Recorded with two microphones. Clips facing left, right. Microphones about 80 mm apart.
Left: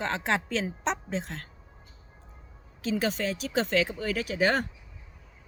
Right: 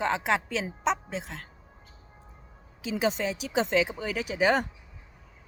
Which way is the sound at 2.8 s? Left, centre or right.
Centre.